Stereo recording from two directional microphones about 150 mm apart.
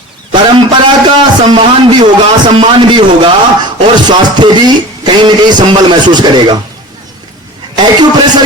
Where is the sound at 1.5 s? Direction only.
30° right (ahead or behind).